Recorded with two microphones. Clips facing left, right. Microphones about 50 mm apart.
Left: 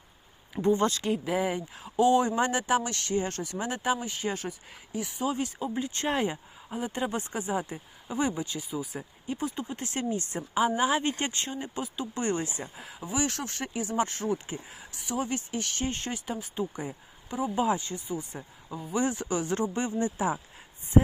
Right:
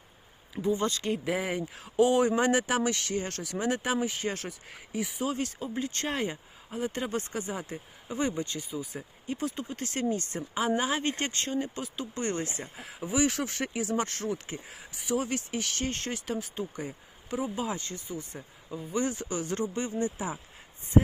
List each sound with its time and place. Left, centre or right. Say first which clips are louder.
0.5 s speech: left 4 dB; left
0.9 s speech: left 1 dB; centre
5.3 s speech: left 2 dB; centre
7.2 s speech: left 3 dB; centre
8.0 s speech: left 1 dB; centre
9.6 s speech: right 1 dB; centre
12.7 s speech: right 4 dB; centre
17.5 s speech: left 6 dB; left
17.7 s speech: left 3 dB; centre
18.7 s speech: left 1 dB; centre
19.0 s speech: left 3 dB; left